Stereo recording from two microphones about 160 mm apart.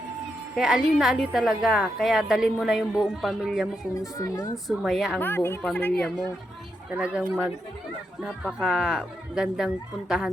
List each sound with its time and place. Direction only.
0.5 s a woman's voice: 5° right (ahead or behind)
3.9 s speech: 20° left (ahead or behind)
4.5 s a woman's voice: 5° right (ahead or behind)
5.2 s a woman's voice: 15° left (ahead or behind)
6.9 s a woman's voice: 5° right (ahead or behind)